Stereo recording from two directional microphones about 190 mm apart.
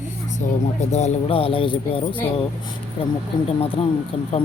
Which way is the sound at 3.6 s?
30° left (ahead or behind).